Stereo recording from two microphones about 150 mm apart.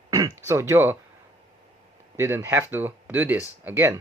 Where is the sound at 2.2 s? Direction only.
15° right (ahead or behind).